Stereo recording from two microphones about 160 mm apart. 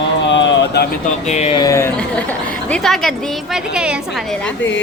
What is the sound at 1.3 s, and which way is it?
Speech, 40° left (ahead or behind).